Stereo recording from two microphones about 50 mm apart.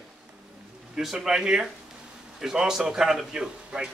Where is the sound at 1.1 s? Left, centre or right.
Centre.